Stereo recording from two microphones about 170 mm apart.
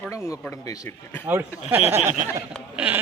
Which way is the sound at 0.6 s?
20° left (ahead or behind).